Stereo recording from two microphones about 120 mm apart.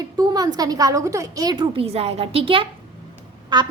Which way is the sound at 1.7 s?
55° right (ahead or behind).